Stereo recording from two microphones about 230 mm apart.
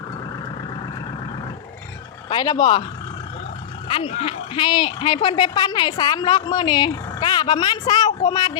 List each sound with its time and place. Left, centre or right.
2.3 s speech: centre
3.8 s speech: left